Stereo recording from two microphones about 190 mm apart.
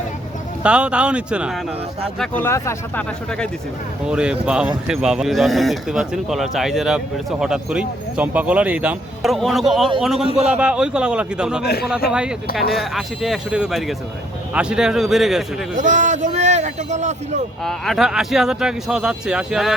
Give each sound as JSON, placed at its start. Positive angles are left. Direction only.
{"t": 0.6, "sound": "speech", "side_deg": -5}
{"t": 2.1, "sound": "speech", "side_deg": 5}
{"t": 4.0, "sound": "speech", "side_deg": -5}
{"t": 11.6, "sound": "a man's voice", "side_deg": 55}
{"t": 12.7, "sound": "speech", "side_deg": 0}
{"t": 15.7, "sound": "a man's voice", "side_deg": -40}
{"t": 17.6, "sound": "speech", "side_deg": 0}